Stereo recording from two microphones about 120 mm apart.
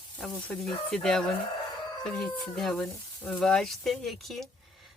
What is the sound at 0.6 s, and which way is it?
Speech, 5° left (ahead or behind).